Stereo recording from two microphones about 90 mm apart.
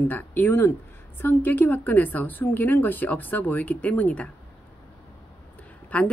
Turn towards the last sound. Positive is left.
turn(degrees=15)  # may be behind; listen again after turning